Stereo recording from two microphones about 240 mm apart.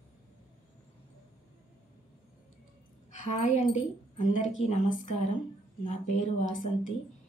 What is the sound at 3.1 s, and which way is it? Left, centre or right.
A woman's voice, left.